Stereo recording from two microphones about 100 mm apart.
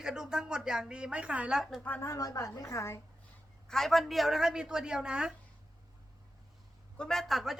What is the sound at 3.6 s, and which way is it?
A woman's voice, 5° left (ahead or behind).